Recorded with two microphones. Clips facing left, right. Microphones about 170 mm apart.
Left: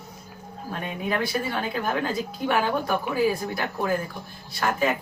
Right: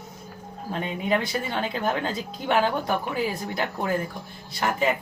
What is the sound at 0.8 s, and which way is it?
Speech, 20° right (ahead or behind).